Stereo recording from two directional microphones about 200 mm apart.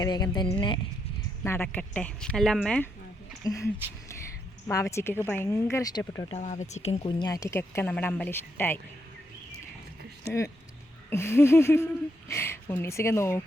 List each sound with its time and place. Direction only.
0.0 s a woman's voice: 20° left (ahead or behind)
1.5 s speech: 10° left (ahead or behind)
3.4 s speech: 15° left (ahead or behind)
4.7 s speech: 15° left (ahead or behind)
6.3 s speech: 35° left (ahead or behind); by 8.8 s 10° left (ahead or behind)
11.1 s speech: 15° left (ahead or behind)